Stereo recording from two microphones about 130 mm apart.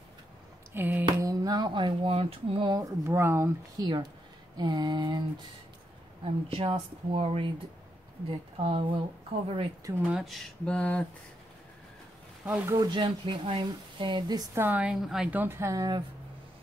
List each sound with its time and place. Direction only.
0.7 s a woman's voice: 15° right (ahead or behind)
1.2 s speech: 30° right (ahead or behind); by 2.7 s 45° right (ahead or behind)
2.7 s speech: 25° right (ahead or behind)
3.7 s speech: 30° right (ahead or behind)
6.2 s speech: 45° right (ahead or behind)
8.5 s speech: 45° right (ahead or behind)
10.0 s speech: centre (ahead or behind)
12.4 s a woman's voice: 10° right (ahead or behind)
12.7 s speech: 30° right (ahead or behind)
14.5 s a woman's voice: 15° right (ahead or behind)
15.4 s speech: 20° right (ahead or behind)